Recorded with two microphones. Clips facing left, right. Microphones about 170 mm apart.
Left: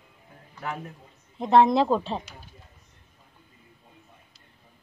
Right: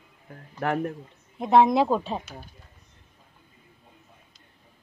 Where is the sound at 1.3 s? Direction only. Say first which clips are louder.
Even; 5° right (ahead or behind).